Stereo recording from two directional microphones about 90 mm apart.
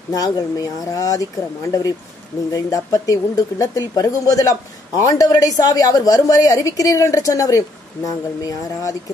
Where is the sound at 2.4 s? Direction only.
40° left (ahead or behind).